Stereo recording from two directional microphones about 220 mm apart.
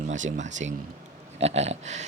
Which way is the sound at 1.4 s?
30° right (ahead or behind).